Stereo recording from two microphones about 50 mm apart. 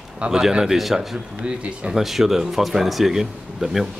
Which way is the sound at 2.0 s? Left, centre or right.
Centre.